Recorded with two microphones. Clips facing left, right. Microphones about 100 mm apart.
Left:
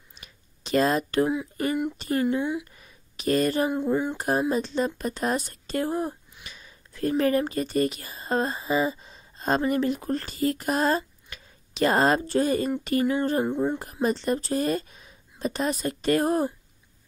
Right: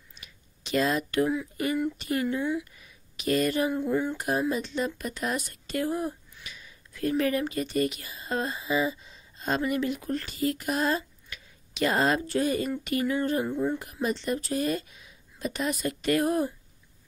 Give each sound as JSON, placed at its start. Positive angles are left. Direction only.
{"t": 0.1, "sound": "a sound", "side_deg": 40}
{"t": 1.2, "sound": "speech", "side_deg": 20}
{"t": 2.0, "sound": "speech", "side_deg": 35}
{"t": 2.2, "sound": "speech", "side_deg": 20}
{"t": 2.7, "sound": "a sound", "side_deg": 40}
{"t": 3.6, "sound": "speech", "side_deg": 20}
{"t": 4.2, "sound": "speech", "side_deg": 35}
{"t": 13.5, "sound": "speech", "side_deg": 25}
{"t": 14.0, "sound": "speech", "side_deg": 40}